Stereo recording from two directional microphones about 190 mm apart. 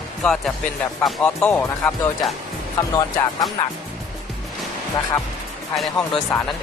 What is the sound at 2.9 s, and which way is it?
Speech, 20° left (ahead or behind).